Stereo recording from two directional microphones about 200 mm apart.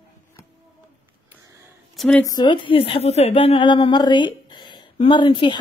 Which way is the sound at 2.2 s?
20° left (ahead or behind).